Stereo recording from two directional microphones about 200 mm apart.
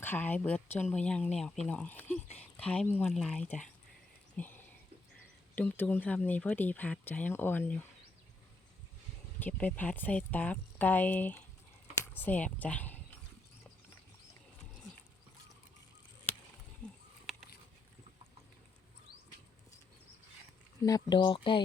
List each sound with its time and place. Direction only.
0.0 s speech: 10° left (ahead or behind)
4.4 s a sound: 10° left (ahead or behind)
5.5 s speech: 10° left (ahead or behind)
9.4 s speech: 5° left (ahead or behind)
20.8 s speech: 20° left (ahead or behind)